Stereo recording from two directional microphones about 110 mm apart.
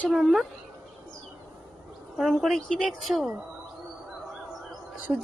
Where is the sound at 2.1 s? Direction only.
Centre (ahead or behind).